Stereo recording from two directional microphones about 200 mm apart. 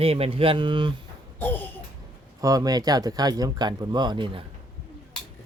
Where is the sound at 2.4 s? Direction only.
20° right (ahead or behind).